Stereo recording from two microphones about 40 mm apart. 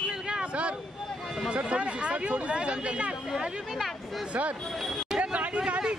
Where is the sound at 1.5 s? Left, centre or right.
Right.